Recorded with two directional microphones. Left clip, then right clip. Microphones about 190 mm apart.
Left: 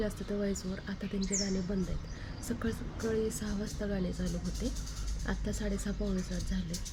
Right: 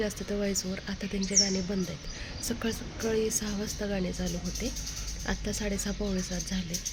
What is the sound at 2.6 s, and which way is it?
A woman's voice, 5° right (ahead or behind).